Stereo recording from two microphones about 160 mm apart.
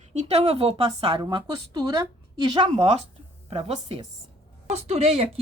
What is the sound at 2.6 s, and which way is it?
Speech, 40° right (ahead or behind).